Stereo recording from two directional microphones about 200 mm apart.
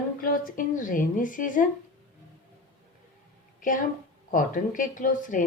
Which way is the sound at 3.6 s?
40° left (ahead or behind).